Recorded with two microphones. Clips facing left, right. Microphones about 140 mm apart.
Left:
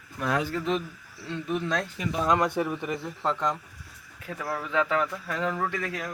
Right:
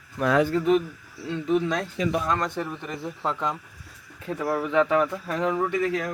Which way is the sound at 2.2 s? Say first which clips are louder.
Left 3 dB; 15° left (ahead or behind).